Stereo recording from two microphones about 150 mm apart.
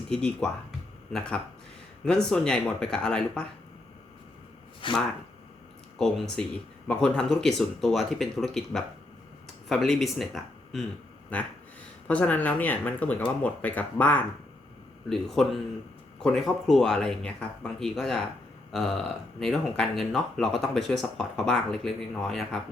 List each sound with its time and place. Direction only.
0.1 s speech: 5° left (ahead or behind)
4.8 s speech: 35° left (ahead or behind)
6.0 s speech: 5° left (ahead or behind)